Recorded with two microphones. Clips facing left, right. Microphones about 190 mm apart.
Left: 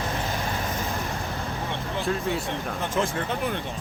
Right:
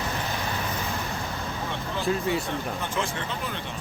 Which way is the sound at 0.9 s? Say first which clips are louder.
Left 1 dB; 35° left (ahead or behind).